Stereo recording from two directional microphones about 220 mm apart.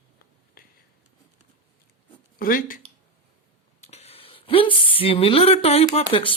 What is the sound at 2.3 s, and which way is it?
Speech, 40° left (ahead or behind).